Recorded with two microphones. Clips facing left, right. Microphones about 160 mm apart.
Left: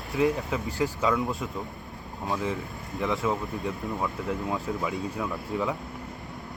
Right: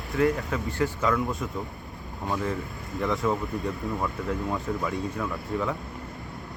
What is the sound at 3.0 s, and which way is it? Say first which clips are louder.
Speech: right 1 dB; centre (ahead or behind).